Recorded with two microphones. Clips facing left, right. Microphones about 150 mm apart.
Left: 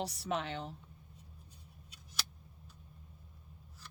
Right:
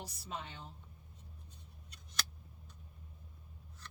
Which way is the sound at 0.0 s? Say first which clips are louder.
Left 9 dB; 80° left.